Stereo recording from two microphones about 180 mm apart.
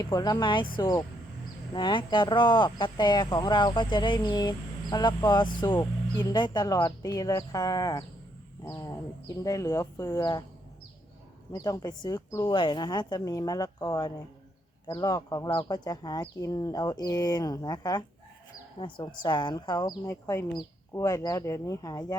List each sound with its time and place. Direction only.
0.0 s speech: 20° left (ahead or behind)
11.5 s speech: 20° left (ahead or behind)